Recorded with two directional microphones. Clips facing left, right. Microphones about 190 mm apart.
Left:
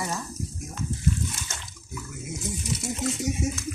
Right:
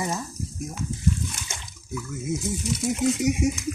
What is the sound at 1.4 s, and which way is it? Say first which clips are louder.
Bathtub: right 1 dB; 15° right (ahead or behind).